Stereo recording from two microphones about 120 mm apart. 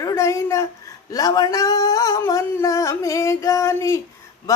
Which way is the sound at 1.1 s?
30° left (ahead or behind).